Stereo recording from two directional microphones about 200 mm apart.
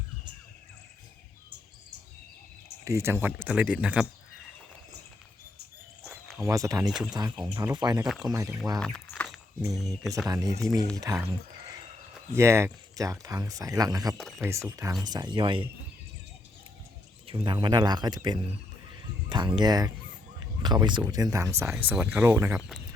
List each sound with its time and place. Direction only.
2.8 s speech: 15° right (ahead or behind)
6.1 s cricket: centre (ahead or behind)
6.4 s speech: 15° right (ahead or behind)
8.0 s speech: centre (ahead or behind)
8.3 s speech: 15° right (ahead or behind)
8.8 s a sound: 5° left (ahead or behind)
10.2 s speech: 15° right (ahead or behind)
12.3 s speech: 15° right (ahead or behind)
14.2 s speech: centre (ahead or behind)
14.4 s speech: 15° right (ahead or behind)
17.2 s speech: 25° right (ahead or behind)